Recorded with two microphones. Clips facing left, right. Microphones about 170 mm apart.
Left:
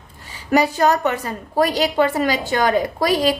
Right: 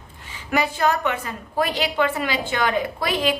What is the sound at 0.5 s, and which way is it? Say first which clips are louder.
A woman's voice: left 5 dB; 40° left (ahead or behind).